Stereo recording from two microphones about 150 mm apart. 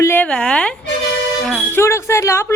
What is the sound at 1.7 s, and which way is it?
Speech, 20° left (ahead or behind).